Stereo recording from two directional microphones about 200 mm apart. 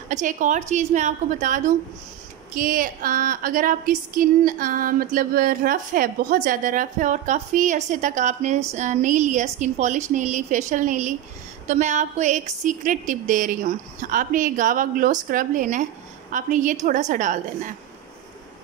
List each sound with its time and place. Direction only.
0.1 s a woman's voice: 40° right (ahead or behind)